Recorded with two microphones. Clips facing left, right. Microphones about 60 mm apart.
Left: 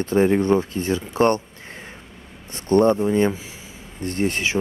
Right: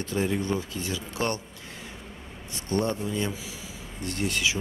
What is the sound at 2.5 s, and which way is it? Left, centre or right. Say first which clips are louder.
Speech: left 11 dB; left.